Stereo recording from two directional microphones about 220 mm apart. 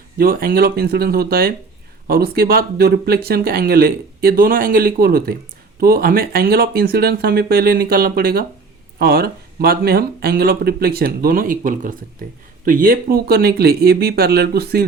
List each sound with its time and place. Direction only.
0.2 s speech: 45° right (ahead or behind)